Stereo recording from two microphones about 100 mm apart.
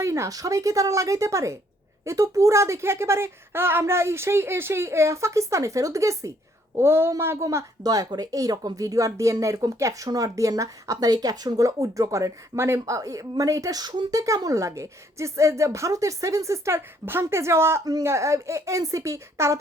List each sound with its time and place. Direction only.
0.0 s speech: 30° right (ahead or behind)